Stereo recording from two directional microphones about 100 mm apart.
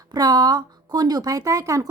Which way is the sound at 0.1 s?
40° right (ahead or behind).